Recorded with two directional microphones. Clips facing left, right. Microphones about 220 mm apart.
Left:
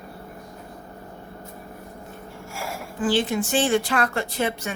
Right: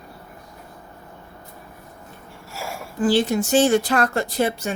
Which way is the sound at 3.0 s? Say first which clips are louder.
Right 3 dB; 40° right (ahead or behind).